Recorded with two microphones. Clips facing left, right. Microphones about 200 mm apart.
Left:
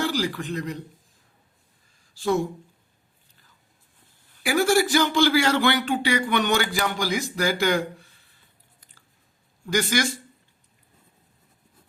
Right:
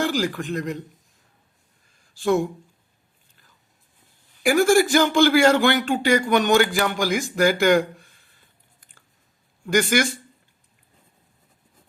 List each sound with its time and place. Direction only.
0.0 s speech: 50° right (ahead or behind)
4.4 s a man's voice: 50° right (ahead or behind)
9.6 s a man's voice: 55° right (ahead or behind)